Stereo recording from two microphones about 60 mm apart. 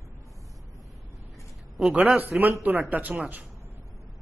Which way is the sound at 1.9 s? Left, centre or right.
Right.